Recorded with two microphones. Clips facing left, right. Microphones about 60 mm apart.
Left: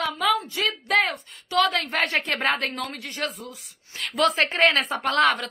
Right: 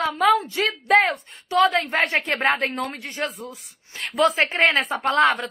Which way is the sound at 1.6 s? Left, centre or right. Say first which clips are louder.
Right 4 dB; centre.